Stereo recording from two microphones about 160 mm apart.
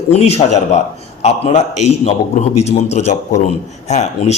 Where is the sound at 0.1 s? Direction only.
40° left (ahead or behind).